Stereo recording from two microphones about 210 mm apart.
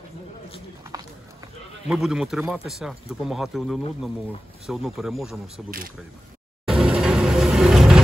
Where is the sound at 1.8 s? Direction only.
Centre (ahead or behind).